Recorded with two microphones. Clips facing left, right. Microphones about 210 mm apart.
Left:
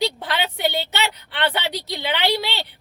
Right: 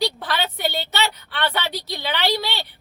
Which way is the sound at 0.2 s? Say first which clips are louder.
Left 1 dB; 20° left (ahead or behind).